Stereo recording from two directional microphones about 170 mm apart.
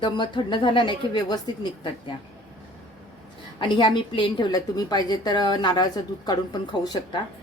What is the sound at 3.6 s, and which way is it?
A woman's voice, 25° left (ahead or behind).